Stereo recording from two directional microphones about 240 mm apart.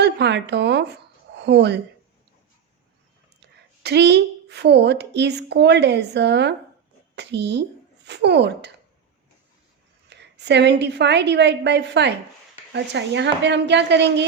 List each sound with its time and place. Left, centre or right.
0.0 s speech: right
3.4 s a woman's voice: right
10.1 s a woman's voice: right